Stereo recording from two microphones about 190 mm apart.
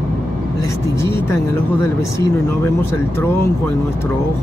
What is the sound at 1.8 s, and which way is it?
Speech, 15° left (ahead or behind).